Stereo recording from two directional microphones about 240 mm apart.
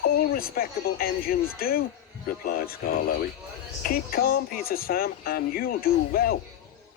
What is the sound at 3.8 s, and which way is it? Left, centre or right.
Speech, left.